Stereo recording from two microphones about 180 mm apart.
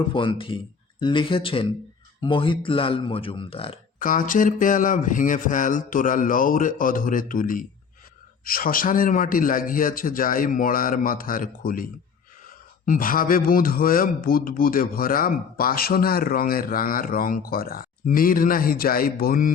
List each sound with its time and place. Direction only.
0.1 s speech: 25° left (ahead or behind)
4.0 s speech: 50° left (ahead or behind)